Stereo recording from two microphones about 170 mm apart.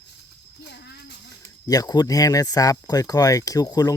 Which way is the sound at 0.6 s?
75° left (ahead or behind).